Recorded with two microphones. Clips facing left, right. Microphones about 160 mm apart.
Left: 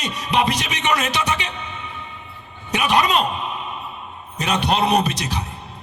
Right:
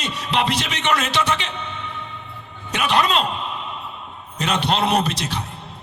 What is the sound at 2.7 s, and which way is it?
Speech, 15° left (ahead or behind).